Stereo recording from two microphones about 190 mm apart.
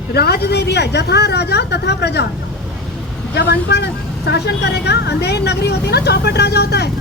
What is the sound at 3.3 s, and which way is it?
Speech, 65° left (ahead or behind).